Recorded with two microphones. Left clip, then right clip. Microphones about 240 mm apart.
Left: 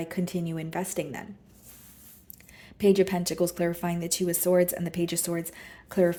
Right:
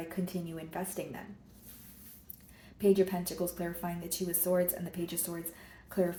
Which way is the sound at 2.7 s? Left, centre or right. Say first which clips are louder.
Left 5 dB; left.